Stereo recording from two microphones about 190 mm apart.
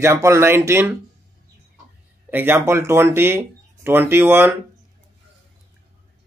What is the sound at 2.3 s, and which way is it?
Speech, 10° right (ahead or behind).